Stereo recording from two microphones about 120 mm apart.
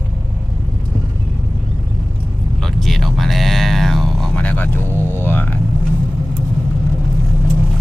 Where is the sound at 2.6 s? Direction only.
Centre (ahead or behind).